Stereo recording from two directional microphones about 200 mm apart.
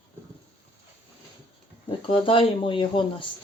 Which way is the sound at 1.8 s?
25° left (ahead or behind).